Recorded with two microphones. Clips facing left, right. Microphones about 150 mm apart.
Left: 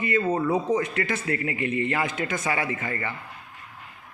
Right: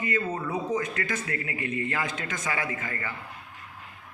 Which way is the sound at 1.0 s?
20° left (ahead or behind).